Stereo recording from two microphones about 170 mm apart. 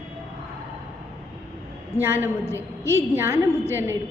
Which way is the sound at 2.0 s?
10° right (ahead or behind).